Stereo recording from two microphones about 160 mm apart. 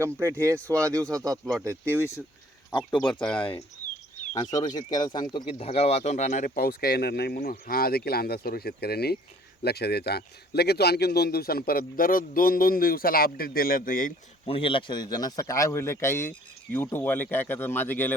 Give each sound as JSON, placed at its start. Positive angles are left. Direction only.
{"t": 0.0, "sound": "speech", "side_deg": -15}
{"t": 0.5, "sound": "speech", "side_deg": 10}
{"t": 0.8, "sound": "speech", "side_deg": -20}
{"t": 2.0, "sound": "speech", "side_deg": 15}
{"t": 2.6, "sound": "speech", "side_deg": 5}
{"t": 4.6, "sound": "a man's voice", "side_deg": 25}
{"t": 9.6, "sound": "a man's voice", "side_deg": 90}
{"t": 14.4, "sound": "speech", "side_deg": 35}